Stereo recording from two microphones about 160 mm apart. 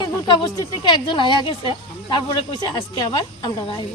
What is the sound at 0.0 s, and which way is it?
Speech, 25° left (ahead or behind).